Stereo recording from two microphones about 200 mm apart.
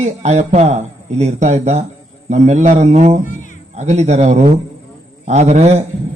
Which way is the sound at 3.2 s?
40° left (ahead or behind).